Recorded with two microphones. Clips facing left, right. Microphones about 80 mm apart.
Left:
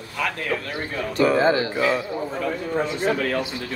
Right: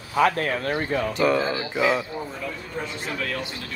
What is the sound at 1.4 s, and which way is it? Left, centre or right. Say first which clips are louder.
Speech: left 8 dB; left.